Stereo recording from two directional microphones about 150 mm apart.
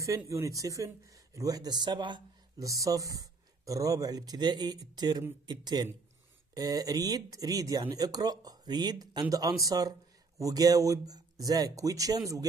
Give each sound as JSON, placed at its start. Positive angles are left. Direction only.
{"t": 0.0, "sound": "speech", "side_deg": -20}